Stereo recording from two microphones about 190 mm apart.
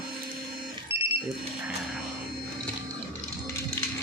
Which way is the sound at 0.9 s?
15° right (ahead or behind).